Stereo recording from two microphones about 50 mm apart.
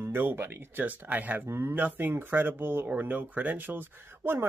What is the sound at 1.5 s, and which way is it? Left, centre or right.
Speech, right.